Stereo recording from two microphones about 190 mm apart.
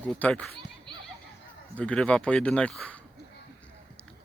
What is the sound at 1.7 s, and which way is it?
Speech, 5° left (ahead or behind).